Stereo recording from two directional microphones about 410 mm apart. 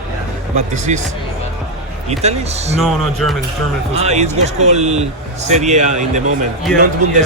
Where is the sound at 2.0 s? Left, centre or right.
Centre.